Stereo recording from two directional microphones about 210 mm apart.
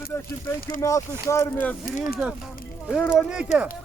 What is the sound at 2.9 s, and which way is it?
Speech, centre (ahead or behind).